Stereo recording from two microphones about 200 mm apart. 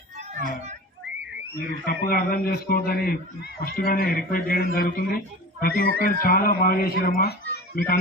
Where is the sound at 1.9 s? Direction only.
50° left (ahead or behind).